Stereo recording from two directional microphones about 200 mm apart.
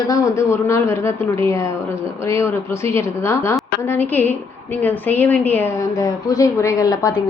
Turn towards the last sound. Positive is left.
turn(degrees=15)  # may be behind; listen again after turning